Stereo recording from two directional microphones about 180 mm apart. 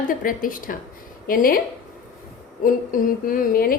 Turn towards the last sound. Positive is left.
turn(degrees=55)  # may be behind; listen again after turning